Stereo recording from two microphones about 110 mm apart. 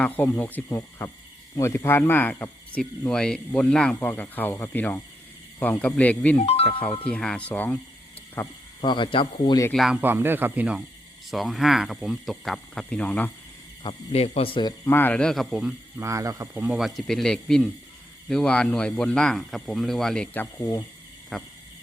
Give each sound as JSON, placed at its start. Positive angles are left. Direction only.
{"t": 0.2, "sound": "speech", "side_deg": 15}
{"t": 6.4, "sound": "speech", "side_deg": 70}
{"t": 7.1, "sound": "speech", "side_deg": 10}
{"t": 8.8, "sound": "speech", "side_deg": 45}
{"t": 9.7, "sound": "speech", "side_deg": 0}
{"t": 10.0, "sound": "speech", "side_deg": -20}
{"t": 14.1, "sound": "speech", "side_deg": 65}
{"t": 14.8, "sound": "speech", "side_deg": 20}
{"t": 16.0, "sound": "speech", "side_deg": -30}
{"t": 16.6, "sound": "speech", "side_deg": -15}
{"t": 16.8, "sound": "speech", "side_deg": 5}
{"t": 20.3, "sound": "speech", "side_deg": 15}
{"t": 21.3, "sound": "speech", "side_deg": 5}